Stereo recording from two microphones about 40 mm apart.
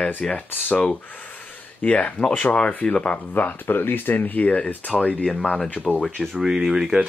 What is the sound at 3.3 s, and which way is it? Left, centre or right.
Speech, left.